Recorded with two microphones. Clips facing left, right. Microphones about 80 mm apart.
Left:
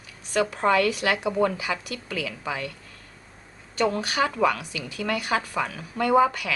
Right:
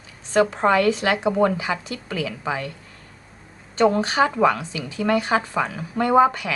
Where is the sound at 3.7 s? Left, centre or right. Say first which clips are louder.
Right 6 dB; right.